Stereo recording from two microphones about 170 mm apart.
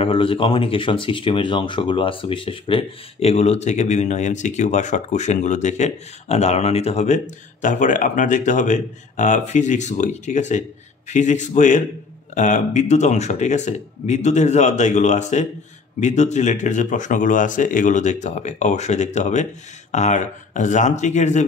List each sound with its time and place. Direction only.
0.0 s speech: 30° left (ahead or behind)